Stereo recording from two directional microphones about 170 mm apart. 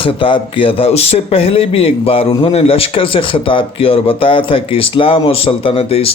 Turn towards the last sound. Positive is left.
turn(degrees=35)  # may be behind; listen again after turning